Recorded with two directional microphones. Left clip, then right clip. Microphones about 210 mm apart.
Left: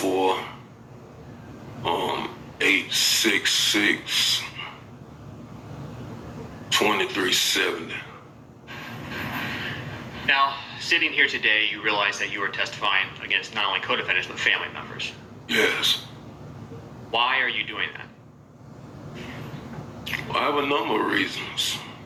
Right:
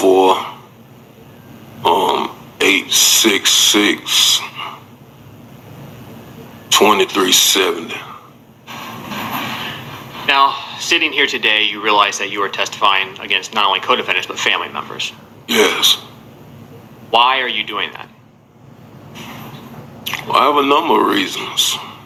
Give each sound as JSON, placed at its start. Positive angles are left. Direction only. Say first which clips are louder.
{"t": 0.0, "sound": "a sound", "louder": "right 12 dB", "side_deg": -55}
{"t": 1.8, "sound": "a sound", "louder": "right 12 dB", "side_deg": -55}
{"t": 6.7, "sound": "speech", "louder": "right 10 dB", "side_deg": -55}
{"t": 17.1, "sound": "speech", "louder": "right 9 dB", "side_deg": -55}
{"t": 19.1, "sound": "vehicle", "louder": "right 7 dB", "side_deg": -55}
{"t": 20.1, "sound": "speech", "louder": "right 11 dB", "side_deg": -55}